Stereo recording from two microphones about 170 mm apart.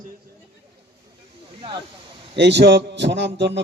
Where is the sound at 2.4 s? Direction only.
85° right.